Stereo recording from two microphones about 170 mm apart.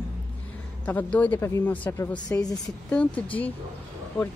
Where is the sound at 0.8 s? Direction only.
10° left (ahead or behind).